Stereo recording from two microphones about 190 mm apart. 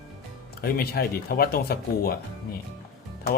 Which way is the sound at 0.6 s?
55° left (ahead or behind).